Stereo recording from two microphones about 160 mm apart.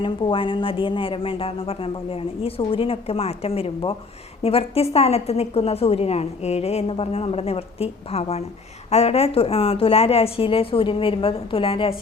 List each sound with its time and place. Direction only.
0.0 s a woman's voice: 30° left (ahead or behind)